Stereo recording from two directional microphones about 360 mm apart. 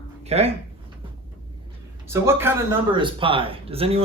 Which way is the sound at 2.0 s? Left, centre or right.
Centre.